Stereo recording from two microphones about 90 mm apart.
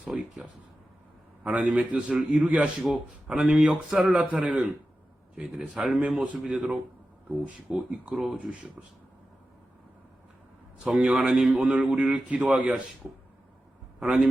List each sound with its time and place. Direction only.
0.0 s a man's voice: 10° right (ahead or behind)
1.5 s a man's voice: 10° right (ahead or behind)
7.7 s a man's voice: 10° right (ahead or behind)
10.8 s a man's voice: 5° right (ahead or behind)
14.0 s a man's voice: centre (ahead or behind)